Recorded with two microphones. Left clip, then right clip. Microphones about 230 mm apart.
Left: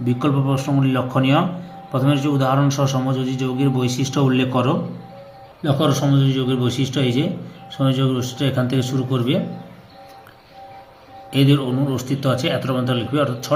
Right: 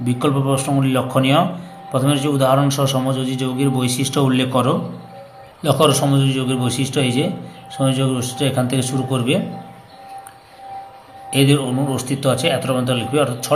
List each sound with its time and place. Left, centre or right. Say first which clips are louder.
0.0 s a man's voice: right 2 dB; centre
11.3 s a man's voice: right 2 dB; centre